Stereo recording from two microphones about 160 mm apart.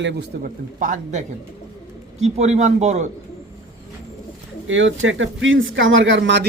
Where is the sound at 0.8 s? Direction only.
55° right (ahead or behind).